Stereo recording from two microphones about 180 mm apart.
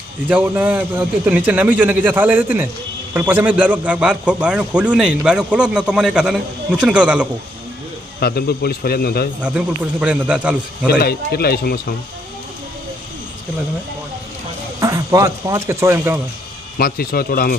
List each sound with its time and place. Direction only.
0.3 s a man's voice: 10° right (ahead or behind)
8.2 s a man's voice: 60° left (ahead or behind)
9.4 s a man's voice: 5° right (ahead or behind)
10.8 s a man's voice: 60° left (ahead or behind)
14.8 s speech: 15° right (ahead or behind)
16.7 s a man's voice: 55° left (ahead or behind)